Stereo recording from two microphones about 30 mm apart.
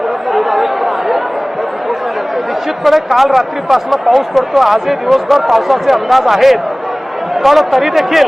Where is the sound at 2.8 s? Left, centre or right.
Centre.